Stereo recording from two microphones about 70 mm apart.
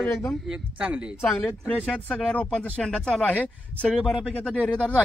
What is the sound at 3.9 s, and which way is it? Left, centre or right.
Speech, centre.